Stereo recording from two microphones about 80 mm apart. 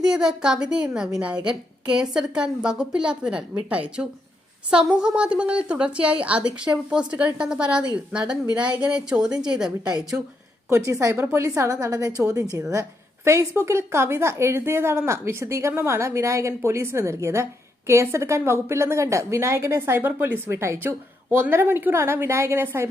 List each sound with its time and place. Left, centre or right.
0.0 s a woman's voice: centre
10.7 s a woman's voice: right